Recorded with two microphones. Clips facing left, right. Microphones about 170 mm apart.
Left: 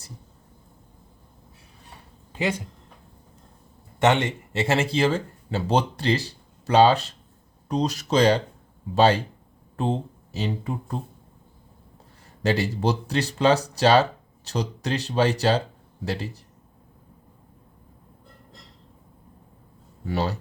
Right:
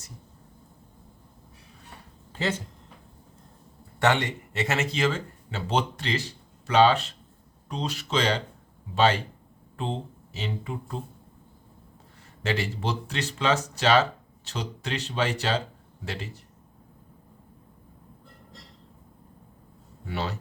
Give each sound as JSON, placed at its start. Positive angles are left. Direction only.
{"t": 2.3, "sound": "speech", "side_deg": 15}
{"t": 4.0, "sound": "speech", "side_deg": 20}
{"t": 10.3, "sound": "speech", "side_deg": 40}
{"t": 12.4, "sound": "speech", "side_deg": 35}
{"t": 20.1, "sound": "speech", "side_deg": 40}